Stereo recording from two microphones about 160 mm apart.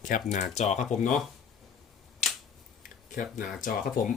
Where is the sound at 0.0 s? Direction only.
55° left (ahead or behind).